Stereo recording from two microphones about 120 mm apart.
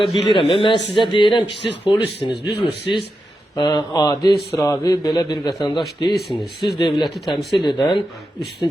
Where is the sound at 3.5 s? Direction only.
35° left (ahead or behind).